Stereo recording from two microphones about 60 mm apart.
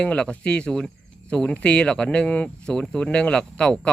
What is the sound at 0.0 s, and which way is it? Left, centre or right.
Speech, centre.